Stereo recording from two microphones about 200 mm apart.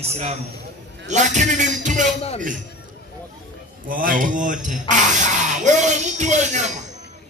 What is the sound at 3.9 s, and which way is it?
Speech, 45° right (ahead or behind).